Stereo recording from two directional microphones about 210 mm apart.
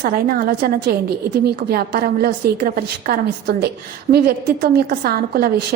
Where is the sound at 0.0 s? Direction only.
45° right (ahead or behind).